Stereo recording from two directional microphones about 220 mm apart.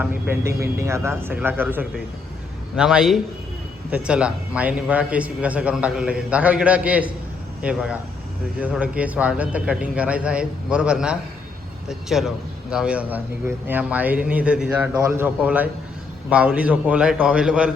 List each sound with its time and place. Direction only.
0.0 s a man's voice: 10° right (ahead or behind)